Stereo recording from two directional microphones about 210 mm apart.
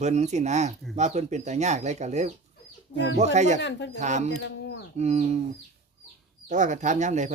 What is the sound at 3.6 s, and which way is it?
Speech, 55° left (ahead or behind).